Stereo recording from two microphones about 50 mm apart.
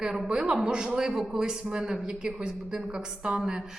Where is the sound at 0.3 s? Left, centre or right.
Centre.